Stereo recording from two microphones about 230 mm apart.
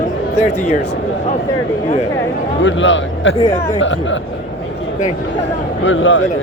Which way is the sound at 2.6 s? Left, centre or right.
Left.